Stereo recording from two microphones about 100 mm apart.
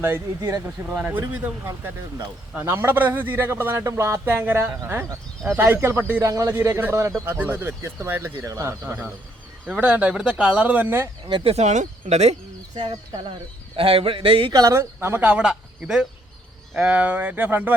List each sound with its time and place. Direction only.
0.0 s a man's voice: 30° right (ahead or behind)
11.6 s speech: 90° right
13.7 s a man's voice: 70° right (ahead or behind)
14.5 s speech: 40° right (ahead or behind)
15.0 s speech: 20° right (ahead or behind)